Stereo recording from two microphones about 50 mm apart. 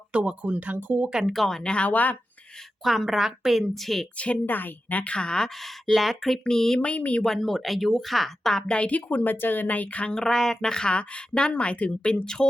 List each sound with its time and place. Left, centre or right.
0.1 s speech: right
0.5 s speech: right
1.3 s speech: centre
1.9 s a woman's voice: left
2.8 s speech: centre
4.4 s a woman's voice: left
5.1 s speech: centre
5.6 s speech: centre
6.8 s speech: left
7.3 s speech: centre
8.6 s a woman's voice: left
10.2 s speech: centre